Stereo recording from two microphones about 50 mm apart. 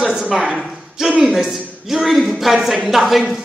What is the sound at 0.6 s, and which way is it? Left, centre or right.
A man's voice, centre.